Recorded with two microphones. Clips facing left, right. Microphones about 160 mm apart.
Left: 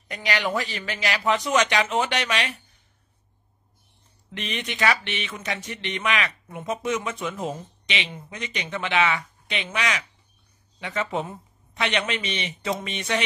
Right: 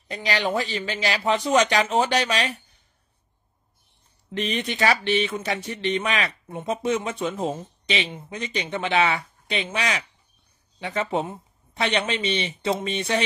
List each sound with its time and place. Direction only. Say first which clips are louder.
0.1 s speech: right 2 dB; 30° right (ahead or behind)
4.3 s speech: right 5 dB; 35° right (ahead or behind)